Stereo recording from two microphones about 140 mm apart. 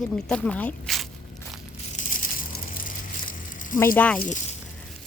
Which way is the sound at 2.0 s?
75° left (ahead or behind).